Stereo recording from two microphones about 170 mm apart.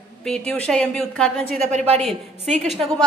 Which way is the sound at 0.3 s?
5° left (ahead or behind).